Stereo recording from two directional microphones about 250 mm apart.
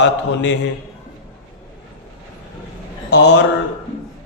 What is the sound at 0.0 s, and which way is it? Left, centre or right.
Speech, left.